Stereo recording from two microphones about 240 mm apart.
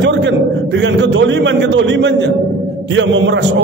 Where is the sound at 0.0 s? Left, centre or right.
Right.